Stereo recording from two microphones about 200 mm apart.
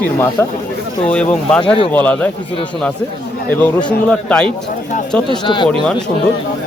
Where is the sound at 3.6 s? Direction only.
5° left (ahead or behind).